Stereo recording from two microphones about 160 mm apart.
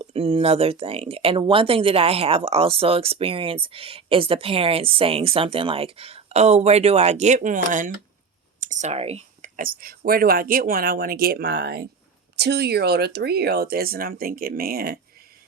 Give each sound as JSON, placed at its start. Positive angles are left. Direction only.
{"t": 0.0, "sound": "speech", "side_deg": -35}
{"t": 9.6, "sound": "speech", "side_deg": -65}